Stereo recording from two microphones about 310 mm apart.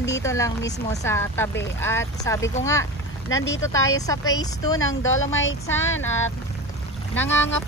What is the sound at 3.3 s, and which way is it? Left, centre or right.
Speech, left.